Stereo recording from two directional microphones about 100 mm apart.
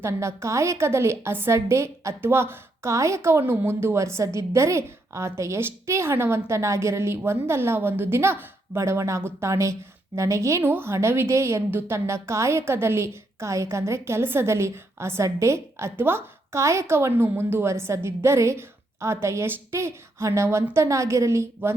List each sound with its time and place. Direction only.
0.0 s a woman's voice: 30° right (ahead or behind)